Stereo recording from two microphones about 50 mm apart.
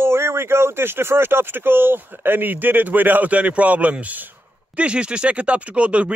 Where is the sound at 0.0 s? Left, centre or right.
Right.